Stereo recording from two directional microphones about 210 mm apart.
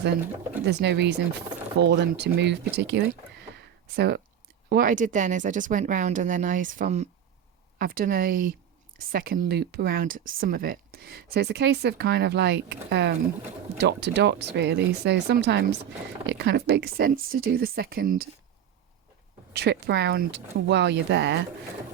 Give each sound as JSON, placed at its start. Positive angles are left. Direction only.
{"t": 0.6, "sound": "speech", "side_deg": -55}
{"t": 3.5, "sound": "a sound", "side_deg": -50}
{"t": 4.7, "sound": "speech", "side_deg": -40}
{"t": 19.5, "sound": "speech", "side_deg": -50}